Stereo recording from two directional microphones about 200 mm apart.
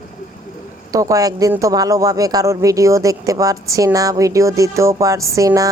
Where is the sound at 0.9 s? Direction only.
15° right (ahead or behind).